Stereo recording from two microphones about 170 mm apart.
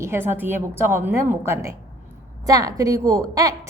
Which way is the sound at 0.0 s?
15° right (ahead or behind).